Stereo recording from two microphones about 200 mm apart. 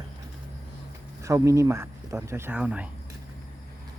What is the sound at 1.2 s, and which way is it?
Speech, 15° right (ahead or behind).